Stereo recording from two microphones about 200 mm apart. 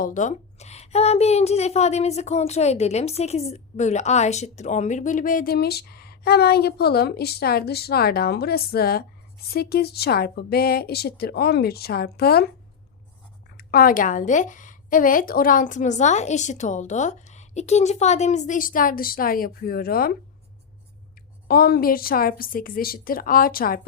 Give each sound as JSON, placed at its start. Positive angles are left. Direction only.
{"t": 0.0, "sound": "a woman's voice", "side_deg": 40}
{"t": 13.6, "sound": "a woman's voice", "side_deg": 50}
{"t": 21.4, "sound": "speech", "side_deg": 50}